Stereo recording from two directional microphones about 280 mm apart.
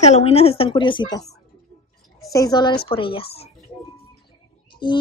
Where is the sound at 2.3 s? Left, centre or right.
Centre.